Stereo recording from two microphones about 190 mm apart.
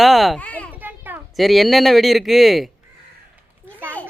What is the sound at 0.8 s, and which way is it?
Speech, 10° right (ahead or behind).